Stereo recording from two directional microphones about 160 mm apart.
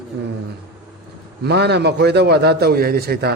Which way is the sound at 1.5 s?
90° right.